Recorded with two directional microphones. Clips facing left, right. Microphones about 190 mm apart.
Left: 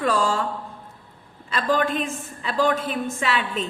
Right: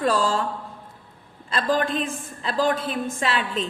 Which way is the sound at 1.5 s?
35° right (ahead or behind).